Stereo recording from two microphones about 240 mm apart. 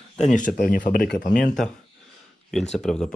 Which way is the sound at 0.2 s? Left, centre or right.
Left.